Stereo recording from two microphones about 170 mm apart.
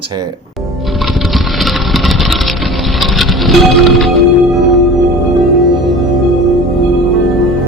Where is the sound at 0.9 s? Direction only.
Centre (ahead or behind).